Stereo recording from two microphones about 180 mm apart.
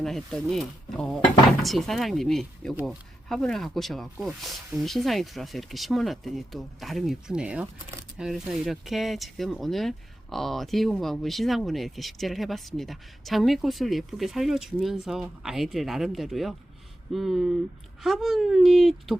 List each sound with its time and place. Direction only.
0.0 s speech: centre (ahead or behind)